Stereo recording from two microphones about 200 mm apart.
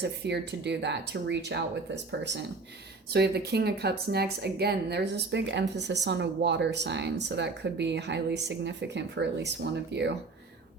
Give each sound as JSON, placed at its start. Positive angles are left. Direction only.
{"t": 0.0, "sound": "speech", "side_deg": -60}
{"t": 3.1, "sound": "speech", "side_deg": -55}